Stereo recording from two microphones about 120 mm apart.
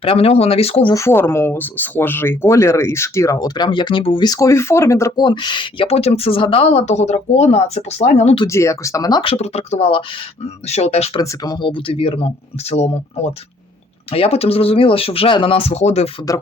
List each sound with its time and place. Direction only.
0.0 s speech: 50° left (ahead or behind)
0.9 s speech: 20° left (ahead or behind); by 4.3 s 45° left (ahead or behind)
4.3 s speech: 25° left (ahead or behind)
5.1 s speech: 40° left (ahead or behind); by 8.4 s 60° left (ahead or behind)
8.4 s speech: 25° left (ahead or behind)
9.2 s speech: 60° left (ahead or behind)
11.2 s speech: 30° left (ahead or behind)
11.6 s speech: 45° left (ahead or behind)
12.7 s speech: 60° left (ahead or behind)